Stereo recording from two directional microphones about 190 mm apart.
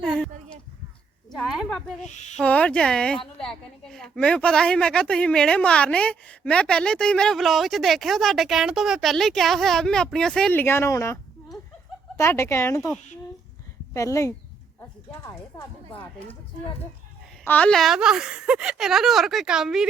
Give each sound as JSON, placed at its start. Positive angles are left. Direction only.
{"t": 0.0, "sound": "a sound", "side_deg": 0}
{"t": 1.3, "sound": "a woman's voice", "side_deg": 0}
{"t": 2.0, "sound": "speech", "side_deg": 40}
{"t": 2.4, "sound": "a woman's voice", "side_deg": 5}
{"t": 13.9, "sound": "speech", "side_deg": 15}
{"t": 15.5, "sound": "speech", "side_deg": 20}
{"t": 15.9, "sound": "speech", "side_deg": 30}
{"t": 17.4, "sound": "a woman's voice", "side_deg": 5}